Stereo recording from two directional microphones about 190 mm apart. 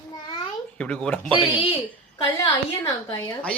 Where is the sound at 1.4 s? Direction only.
25° left (ahead or behind).